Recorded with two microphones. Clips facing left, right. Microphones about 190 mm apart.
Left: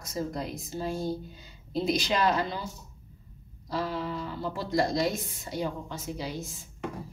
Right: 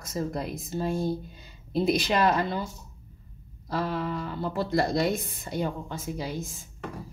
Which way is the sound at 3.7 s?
60° right (ahead or behind).